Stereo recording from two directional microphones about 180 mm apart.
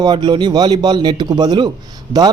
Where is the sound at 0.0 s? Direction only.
25° right (ahead or behind).